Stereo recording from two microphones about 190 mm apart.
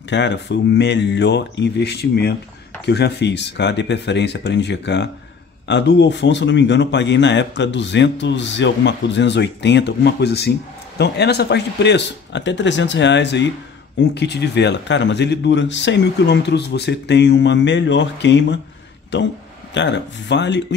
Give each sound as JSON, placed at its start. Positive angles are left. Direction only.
{"t": 0.1, "sound": "a man's voice", "side_deg": 65}
{"t": 19.7, "sound": "a man's voice", "side_deg": 70}